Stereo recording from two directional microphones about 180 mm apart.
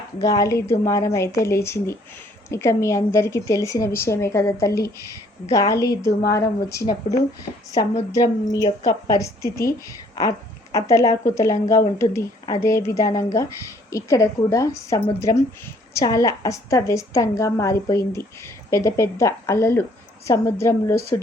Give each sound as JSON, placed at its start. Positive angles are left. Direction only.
{"t": 0.2, "sound": "a woman's voice", "side_deg": 20}